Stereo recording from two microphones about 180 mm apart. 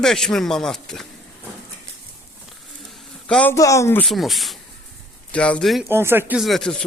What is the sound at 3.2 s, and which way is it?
Speech, 5° left (ahead or behind).